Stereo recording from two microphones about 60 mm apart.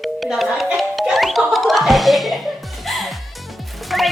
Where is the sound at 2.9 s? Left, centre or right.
Centre.